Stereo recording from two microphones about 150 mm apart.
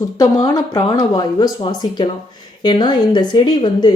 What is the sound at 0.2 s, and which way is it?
A woman's voice, 20° left (ahead or behind).